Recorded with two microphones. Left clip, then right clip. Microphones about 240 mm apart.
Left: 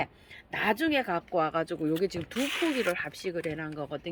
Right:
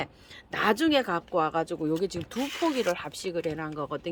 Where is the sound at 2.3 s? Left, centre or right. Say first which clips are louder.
Right 2 dB; centre.